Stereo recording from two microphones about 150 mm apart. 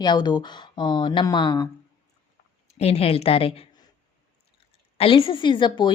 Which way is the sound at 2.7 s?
45° left (ahead or behind).